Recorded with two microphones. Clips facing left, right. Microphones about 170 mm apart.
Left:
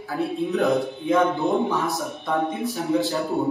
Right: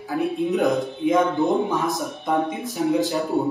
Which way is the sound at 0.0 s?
15° right (ahead or behind).